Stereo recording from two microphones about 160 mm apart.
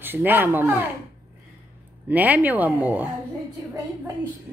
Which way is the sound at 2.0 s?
10° right (ahead or behind).